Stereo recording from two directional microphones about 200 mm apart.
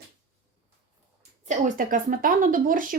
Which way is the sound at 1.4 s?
45° right (ahead or behind).